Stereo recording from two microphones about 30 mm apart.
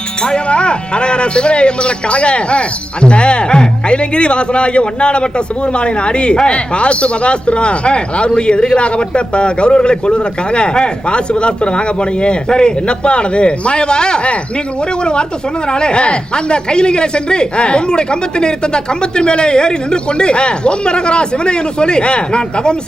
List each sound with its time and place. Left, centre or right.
0.2 s livestock: left
0.4 s a woman's voice: left